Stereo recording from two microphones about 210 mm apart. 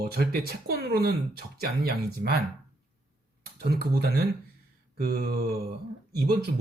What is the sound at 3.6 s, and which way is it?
Speech, 50° right (ahead or behind).